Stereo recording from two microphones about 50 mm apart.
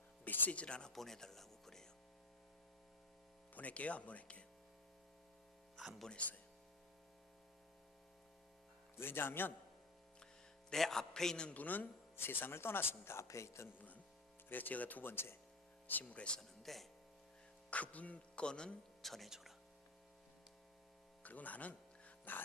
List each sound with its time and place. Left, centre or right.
0.3 s music: left
0.6 s a man's voice: centre
3.5 s speech: left
9.0 s speech: left
10.7 s a man's voice: centre
11.5 s speech: left
12.1 s speech: left
14.5 s speech: left
16.4 s speech: centre
17.7 s speech: left
19.0 s speech: centre
21.2 s music: left